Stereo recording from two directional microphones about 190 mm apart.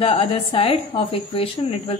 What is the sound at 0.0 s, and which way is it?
A woman's voice, 30° left (ahead or behind).